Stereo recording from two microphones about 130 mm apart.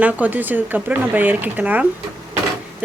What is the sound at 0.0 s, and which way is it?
Speech, 10° right (ahead or behind).